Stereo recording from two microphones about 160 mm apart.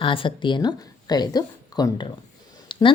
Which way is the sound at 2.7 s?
30° left (ahead or behind).